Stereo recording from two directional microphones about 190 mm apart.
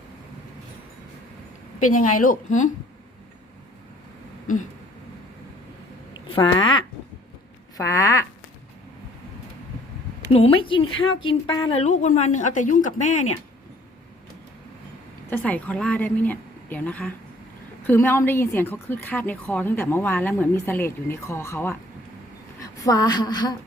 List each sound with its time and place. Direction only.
1.8 s a woman's voice: 45° left (ahead or behind)
6.2 s a sound: 30° left (ahead or behind)
6.5 s a woman's voice: 25° left (ahead or behind)
10.3 s a woman's voice: 30° left (ahead or behind)
15.3 s a woman's voice: 10° left (ahead or behind)
22.8 s a woman's voice: 20° left (ahead or behind)